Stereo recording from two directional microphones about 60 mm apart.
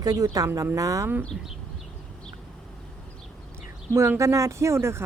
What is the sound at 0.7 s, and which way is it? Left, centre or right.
Speech, right.